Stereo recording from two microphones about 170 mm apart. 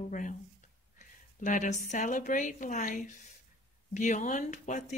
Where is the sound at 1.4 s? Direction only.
50° left (ahead or behind).